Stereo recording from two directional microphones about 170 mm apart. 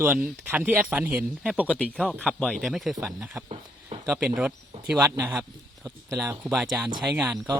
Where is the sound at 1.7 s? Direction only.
5° left (ahead or behind).